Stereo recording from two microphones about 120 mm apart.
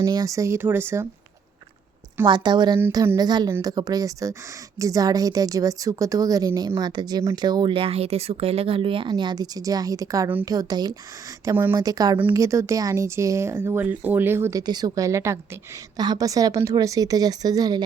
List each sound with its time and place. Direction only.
0.0 s speech: 30° right (ahead or behind)
2.2 s a woman's voice: 40° right (ahead or behind)
11.4 s speech: 15° right (ahead or behind)
11.7 s a woman's voice: 30° right (ahead or behind)
14.7 s a woman's voice: 30° right (ahead or behind)